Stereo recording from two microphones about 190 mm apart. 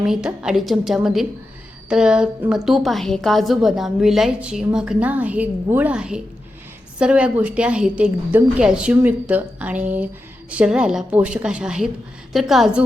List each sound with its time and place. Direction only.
0.0 s a woman's voice: 5° right (ahead or behind)